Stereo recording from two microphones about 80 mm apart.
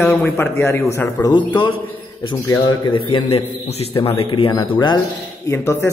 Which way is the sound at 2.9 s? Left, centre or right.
Left.